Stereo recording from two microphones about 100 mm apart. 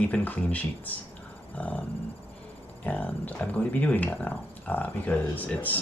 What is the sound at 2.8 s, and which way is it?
Speech, 15° left (ahead or behind).